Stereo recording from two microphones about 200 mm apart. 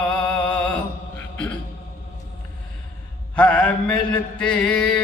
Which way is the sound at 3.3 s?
5° left (ahead or behind).